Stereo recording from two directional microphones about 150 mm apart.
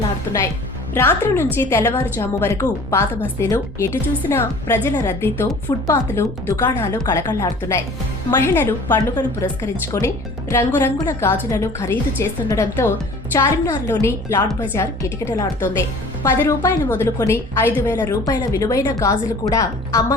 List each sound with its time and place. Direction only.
0.9 s a woman's voice: 15° left (ahead or behind)